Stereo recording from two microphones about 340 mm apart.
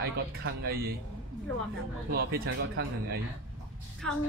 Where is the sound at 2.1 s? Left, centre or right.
Right.